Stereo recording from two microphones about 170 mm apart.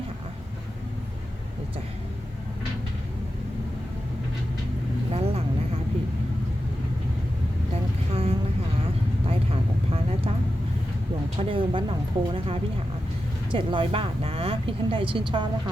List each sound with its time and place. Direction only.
5.1 s vehicle: 35° right (ahead or behind)
8.1 s vehicle: 35° right (ahead or behind)
9.5 s vehicle: 35° right (ahead or behind)
11.3 s speech: 30° right (ahead or behind)